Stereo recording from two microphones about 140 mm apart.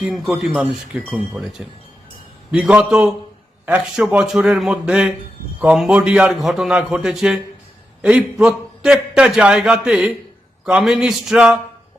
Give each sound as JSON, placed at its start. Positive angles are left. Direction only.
{"t": 0.0, "sound": "a man's voice", "side_deg": -5}